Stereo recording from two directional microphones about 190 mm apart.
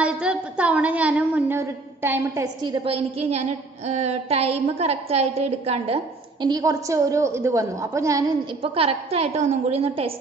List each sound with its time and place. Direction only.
0.0 s a woman's voice: 5° right (ahead or behind); by 5.9 s 35° right (ahead or behind)
6.4 s a woman's voice: 20° right (ahead or behind)
8.7 s a woman's voice: 30° right (ahead or behind)